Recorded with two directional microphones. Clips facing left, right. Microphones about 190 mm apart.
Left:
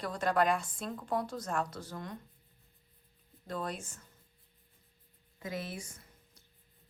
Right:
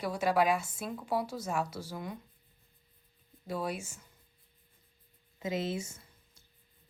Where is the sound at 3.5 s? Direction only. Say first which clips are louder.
Right 3 dB; 10° right (ahead or behind).